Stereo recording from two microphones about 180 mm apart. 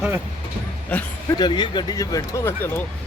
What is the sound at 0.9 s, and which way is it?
Speech, 10° left (ahead or behind).